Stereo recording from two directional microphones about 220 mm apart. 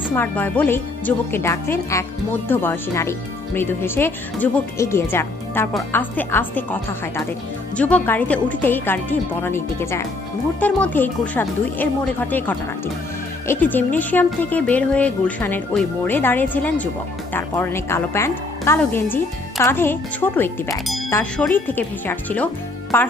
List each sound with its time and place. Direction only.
0.1 s a woman's voice: 10° left (ahead or behind)